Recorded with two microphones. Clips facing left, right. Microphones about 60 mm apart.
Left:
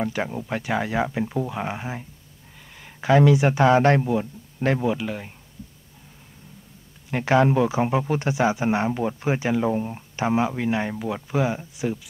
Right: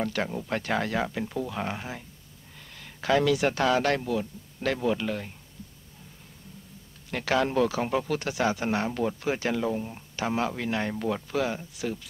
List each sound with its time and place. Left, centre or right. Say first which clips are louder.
0.0 s speech: left 3 dB; centre
4.8 s speech: left 2 dB; centre
7.1 s speech: left 7 dB; left